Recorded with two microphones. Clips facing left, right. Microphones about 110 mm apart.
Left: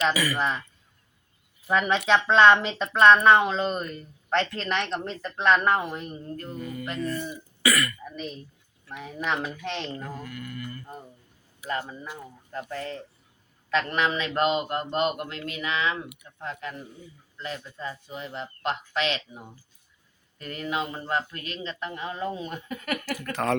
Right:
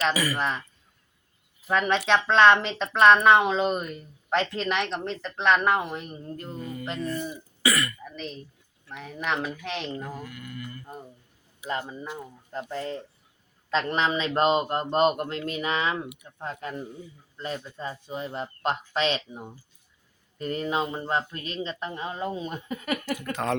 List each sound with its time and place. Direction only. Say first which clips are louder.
0.1 s a man's voice: even; 35° right (ahead or behind)
0.3 s speech: left 1 dB; centre (ahead or behind)
1.6 s speech: even; centre (ahead or behind)
6.3 s a man's voice: even; 20° right (ahead or behind)
8.0 s a woman's voice: left 1 dB; 5° left (ahead or behind); by 23.6 s 20° right (ahead or behind)